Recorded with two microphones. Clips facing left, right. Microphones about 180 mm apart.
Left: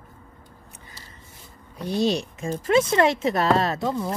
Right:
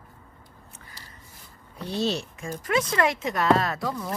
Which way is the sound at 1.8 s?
15° left (ahead or behind).